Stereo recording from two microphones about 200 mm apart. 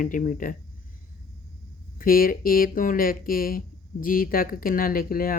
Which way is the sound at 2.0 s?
45° left (ahead or behind).